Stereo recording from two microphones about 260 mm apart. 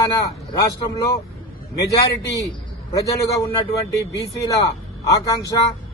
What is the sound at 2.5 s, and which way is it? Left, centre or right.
A man's voice, centre.